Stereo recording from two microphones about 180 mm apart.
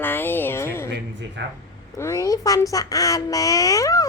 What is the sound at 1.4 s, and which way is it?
Speech, 80° right.